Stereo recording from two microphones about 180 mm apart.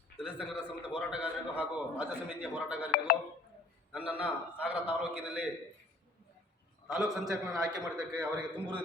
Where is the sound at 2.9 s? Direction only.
60° left (ahead or behind).